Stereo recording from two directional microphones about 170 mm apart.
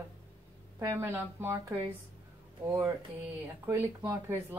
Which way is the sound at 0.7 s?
15° right (ahead or behind).